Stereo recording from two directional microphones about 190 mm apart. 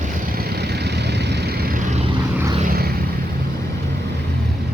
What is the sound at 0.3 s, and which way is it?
Vehicle, 55° right (ahead or behind).